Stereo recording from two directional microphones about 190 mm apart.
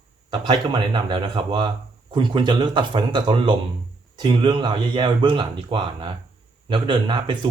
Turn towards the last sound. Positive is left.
turn(degrees=-25)  # may be behind; listen again after turning